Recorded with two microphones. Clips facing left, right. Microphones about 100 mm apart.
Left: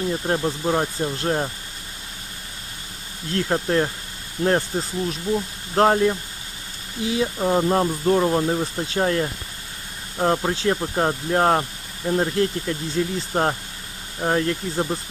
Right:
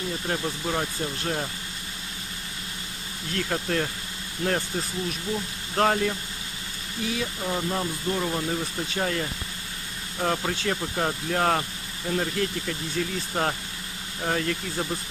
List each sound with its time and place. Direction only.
0.1 s speech: 35° left (ahead or behind)
3.3 s speech: 35° left (ahead or behind)
5.7 s speech: 35° left (ahead or behind)